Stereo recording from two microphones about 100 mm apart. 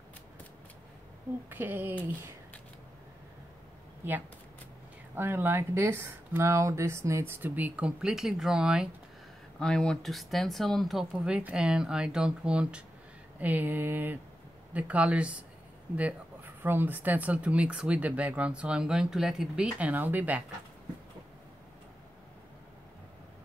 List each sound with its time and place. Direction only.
1.5 s speech: 20° right (ahead or behind)
4.0 s speech: 20° right (ahead or behind)
9.6 s speech: 5° left (ahead or behind); by 20.4 s 15° right (ahead or behind)